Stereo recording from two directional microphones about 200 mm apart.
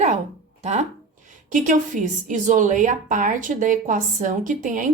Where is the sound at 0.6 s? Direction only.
35° right (ahead or behind).